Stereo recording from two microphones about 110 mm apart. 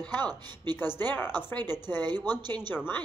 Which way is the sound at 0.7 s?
20° left (ahead or behind).